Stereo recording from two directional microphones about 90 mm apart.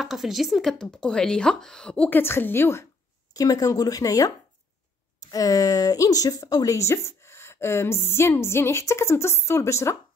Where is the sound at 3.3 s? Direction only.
45° left (ahead or behind).